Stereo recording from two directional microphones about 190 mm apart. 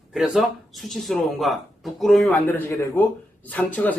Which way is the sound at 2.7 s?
15° left (ahead or behind).